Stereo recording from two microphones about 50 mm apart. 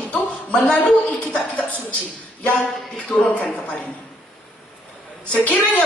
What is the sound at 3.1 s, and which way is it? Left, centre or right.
Speech, left.